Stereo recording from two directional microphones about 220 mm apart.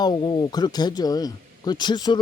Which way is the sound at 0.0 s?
20° left (ahead or behind).